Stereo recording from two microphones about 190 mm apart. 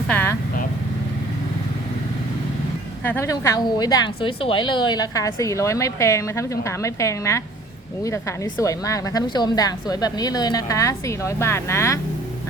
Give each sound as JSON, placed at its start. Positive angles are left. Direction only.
{"t": 0.1, "sound": "speech", "side_deg": 10}
{"t": 3.0, "sound": "a woman's voice", "side_deg": 10}
{"t": 8.6, "sound": "a woman's voice", "side_deg": 15}